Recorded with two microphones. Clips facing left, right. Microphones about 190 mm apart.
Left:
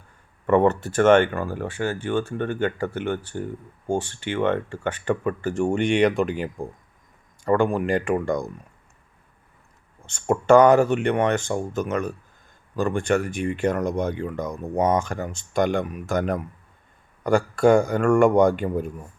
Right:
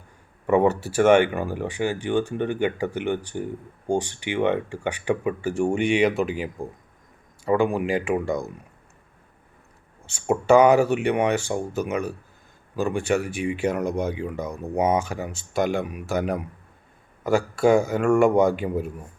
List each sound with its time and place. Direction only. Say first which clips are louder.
0.4 s a man's voice: left 1 dB; 10° right (ahead or behind)
10.1 s a man's voice: left 1 dB; 5° right (ahead or behind)